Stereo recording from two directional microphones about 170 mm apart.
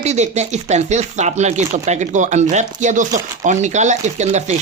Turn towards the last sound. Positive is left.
turn(degrees=-40)  # may be behind; listen again after turning